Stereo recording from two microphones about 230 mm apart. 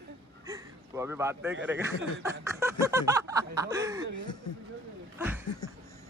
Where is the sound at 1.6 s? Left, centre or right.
Centre.